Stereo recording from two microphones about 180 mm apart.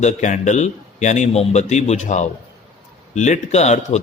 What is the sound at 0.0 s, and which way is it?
Speech, 45° left (ahead or behind).